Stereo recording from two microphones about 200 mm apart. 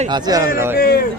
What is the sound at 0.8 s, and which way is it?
Speech, 50° left (ahead or behind).